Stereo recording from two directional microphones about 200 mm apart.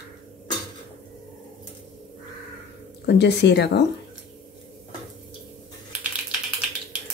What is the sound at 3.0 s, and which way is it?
Speech, 60° left (ahead or behind).